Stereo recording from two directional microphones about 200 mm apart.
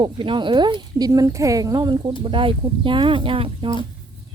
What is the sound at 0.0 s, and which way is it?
Speech, 25° right (ahead or behind).